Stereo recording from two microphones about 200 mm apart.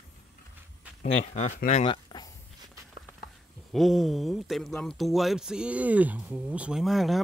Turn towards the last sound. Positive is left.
turn(degrees=0)  # may be behind; listen again after turning